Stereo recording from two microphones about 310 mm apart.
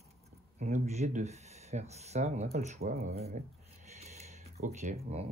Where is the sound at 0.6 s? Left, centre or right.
Right.